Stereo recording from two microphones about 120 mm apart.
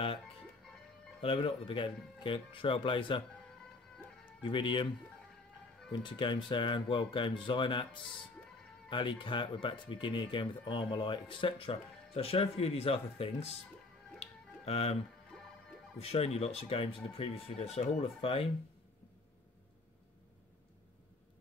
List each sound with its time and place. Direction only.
1.2 s speech: 50° left (ahead or behind)
4.4 s speech: 40° left (ahead or behind)
5.9 s speech: 40° left (ahead or behind)
14.2 s music: 60° left (ahead or behind)
16.0 s speech: 60° left (ahead or behind)